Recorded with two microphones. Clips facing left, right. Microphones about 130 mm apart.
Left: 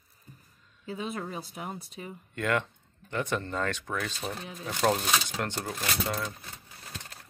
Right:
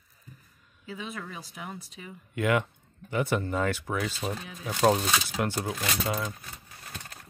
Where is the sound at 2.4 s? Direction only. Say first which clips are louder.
Right 3 dB; 5° right (ahead or behind).